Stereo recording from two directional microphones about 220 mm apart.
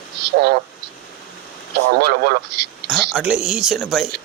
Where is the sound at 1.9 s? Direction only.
45° right (ahead or behind).